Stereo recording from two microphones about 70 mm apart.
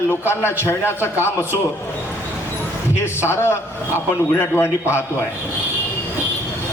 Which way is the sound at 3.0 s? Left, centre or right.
Left.